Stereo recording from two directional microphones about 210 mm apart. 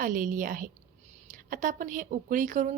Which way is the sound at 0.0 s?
40° right (ahead or behind).